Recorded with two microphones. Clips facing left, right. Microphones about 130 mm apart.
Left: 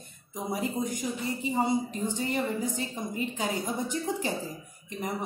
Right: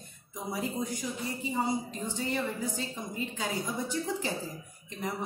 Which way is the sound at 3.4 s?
15° left (ahead or behind).